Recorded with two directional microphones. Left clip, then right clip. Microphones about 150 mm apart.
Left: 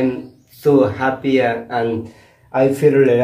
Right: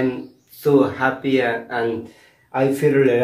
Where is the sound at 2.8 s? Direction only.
15° left (ahead or behind).